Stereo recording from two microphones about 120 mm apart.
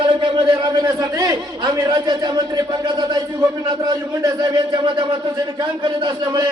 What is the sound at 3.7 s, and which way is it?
A man's voice, 35° right (ahead or behind).